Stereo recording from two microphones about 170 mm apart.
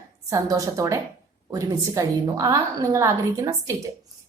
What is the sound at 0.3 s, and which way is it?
A woman's voice, 20° right (ahead or behind).